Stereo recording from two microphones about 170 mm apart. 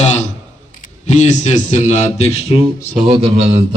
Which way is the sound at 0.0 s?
45° left (ahead or behind).